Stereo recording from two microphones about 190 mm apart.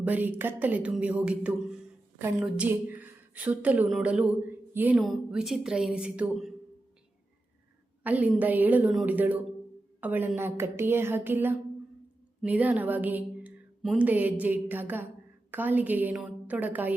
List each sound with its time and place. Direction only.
0.0 s a woman's voice: 10° right (ahead or behind)
8.0 s a woman's voice: 10° right (ahead or behind)